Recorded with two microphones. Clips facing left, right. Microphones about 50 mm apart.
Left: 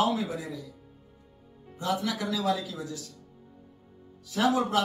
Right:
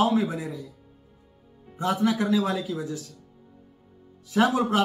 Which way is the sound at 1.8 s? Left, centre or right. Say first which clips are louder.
Right 6 dB; right.